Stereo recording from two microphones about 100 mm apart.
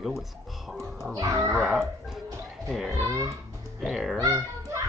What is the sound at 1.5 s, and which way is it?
Speech, centre (ahead or behind).